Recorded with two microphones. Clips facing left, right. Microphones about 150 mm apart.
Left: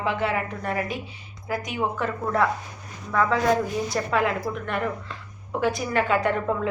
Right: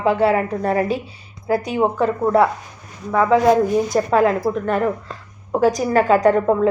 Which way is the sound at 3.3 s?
15° right (ahead or behind).